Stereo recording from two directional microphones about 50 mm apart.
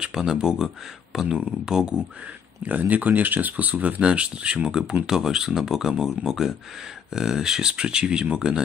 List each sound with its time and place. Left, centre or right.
0.0 s speech: centre
2.6 s speech: right
4.0 s speech: right